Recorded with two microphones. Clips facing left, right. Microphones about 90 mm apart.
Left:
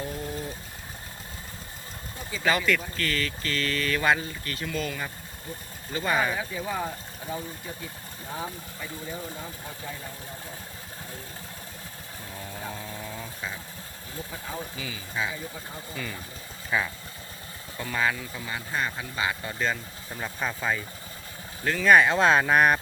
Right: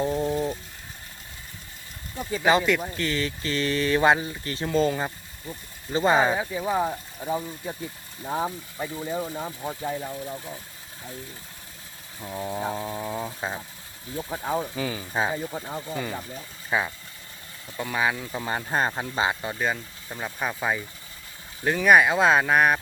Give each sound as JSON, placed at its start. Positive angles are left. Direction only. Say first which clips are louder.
{"t": 0.0, "sound": "a sound", "louder": "right 9 dB", "side_deg": -25}
{"t": 2.4, "sound": "speech", "louder": "right 4 dB", "side_deg": -20}
{"t": 12.2, "sound": "speech", "louder": "right 9 dB", "side_deg": -20}
{"t": 16.6, "sound": "speech", "louder": "right 2 dB", "side_deg": -20}
{"t": 18.3, "sound": "speech", "louder": "right 5 dB", "side_deg": -40}